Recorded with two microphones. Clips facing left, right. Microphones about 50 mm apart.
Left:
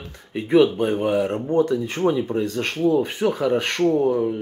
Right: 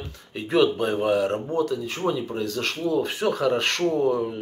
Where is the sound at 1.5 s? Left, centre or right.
Left.